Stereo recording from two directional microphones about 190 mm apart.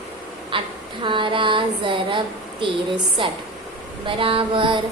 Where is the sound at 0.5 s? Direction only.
25° right (ahead or behind).